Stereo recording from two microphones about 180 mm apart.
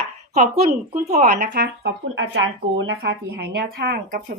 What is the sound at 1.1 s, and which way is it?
Speech, 45° right (ahead or behind).